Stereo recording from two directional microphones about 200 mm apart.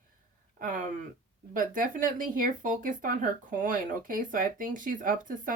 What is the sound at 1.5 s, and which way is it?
Speech, 45° right (ahead or behind).